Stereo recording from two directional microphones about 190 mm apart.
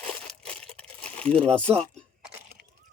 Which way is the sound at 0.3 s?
5° left (ahead or behind).